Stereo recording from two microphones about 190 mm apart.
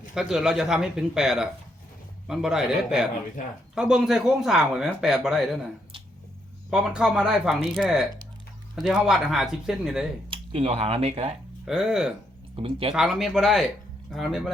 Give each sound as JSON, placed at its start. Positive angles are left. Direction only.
{"t": 0.1, "sound": "speech", "side_deg": -5}
{"t": 6.7, "sound": "speech", "side_deg": -5}
{"t": 10.2, "sound": "speech", "side_deg": -30}
{"t": 11.6, "sound": "speech", "side_deg": 0}
{"t": 12.5, "sound": "speech", "side_deg": -30}
{"t": 12.9, "sound": "speech", "side_deg": 0}